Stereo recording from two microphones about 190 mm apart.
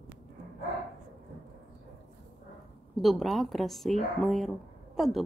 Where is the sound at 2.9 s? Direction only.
Centre (ahead or behind).